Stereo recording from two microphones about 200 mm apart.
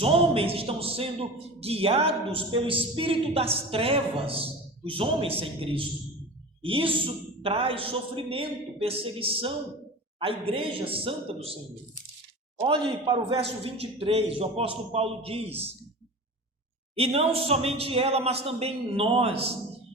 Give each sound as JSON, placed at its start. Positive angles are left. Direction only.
{"t": 0.0, "sound": "a man's voice", "side_deg": -30}
{"t": 12.6, "sound": "a man's voice", "side_deg": -25}
{"t": 16.9, "sound": "a man's voice", "side_deg": -30}